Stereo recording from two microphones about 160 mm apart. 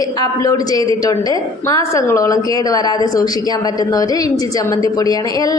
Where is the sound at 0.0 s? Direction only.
25° left (ahead or behind).